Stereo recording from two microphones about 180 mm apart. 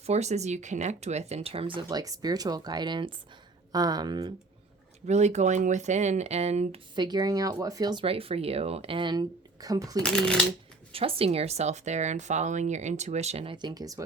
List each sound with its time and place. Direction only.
0.0 s speech: 40° right (ahead or behind); by 4.3 s 20° right (ahead or behind)
5.0 s speech: 40° right (ahead or behind)
6.9 s speech: 25° right (ahead or behind)
10.0 s speech: 5° left (ahead or behind)
10.9 s speech: 30° right (ahead or behind)